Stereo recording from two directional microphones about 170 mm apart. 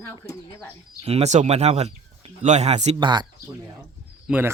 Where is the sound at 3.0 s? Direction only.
25° right (ahead or behind).